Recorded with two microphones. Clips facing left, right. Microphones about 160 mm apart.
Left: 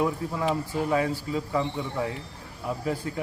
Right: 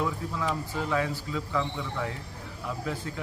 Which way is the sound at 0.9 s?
45° left (ahead or behind).